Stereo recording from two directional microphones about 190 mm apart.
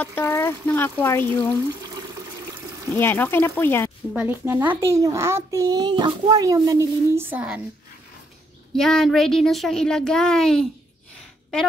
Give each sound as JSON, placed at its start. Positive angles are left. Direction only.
{"t": 0.0, "sound": "speech", "side_deg": 10}
{"t": 2.9, "sound": "speech", "side_deg": 10}
{"t": 4.1, "sound": "a child's voice", "side_deg": -10}
{"t": 8.7, "sound": "a child's voice", "side_deg": 0}